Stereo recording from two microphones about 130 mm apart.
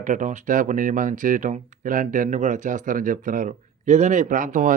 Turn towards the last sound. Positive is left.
turn(degrees=-90)